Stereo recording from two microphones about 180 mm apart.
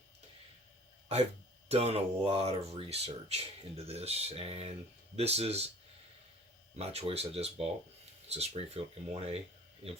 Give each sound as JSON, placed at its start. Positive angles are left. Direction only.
{"t": 1.0, "sound": "speech", "side_deg": -35}
{"t": 6.7, "sound": "speech", "side_deg": -35}